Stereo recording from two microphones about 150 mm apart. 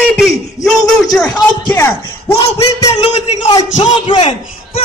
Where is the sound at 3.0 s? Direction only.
45° left (ahead or behind).